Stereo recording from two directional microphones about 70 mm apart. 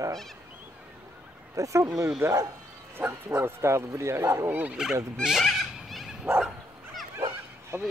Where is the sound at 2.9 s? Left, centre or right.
Right.